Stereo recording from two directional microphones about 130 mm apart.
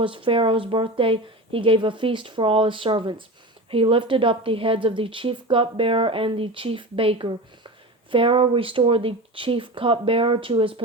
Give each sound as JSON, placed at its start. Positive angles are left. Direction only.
{"t": 0.0, "sound": "a woman's voice", "side_deg": -40}